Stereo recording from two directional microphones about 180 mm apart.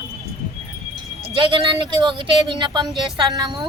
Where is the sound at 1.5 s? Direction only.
25° right (ahead or behind).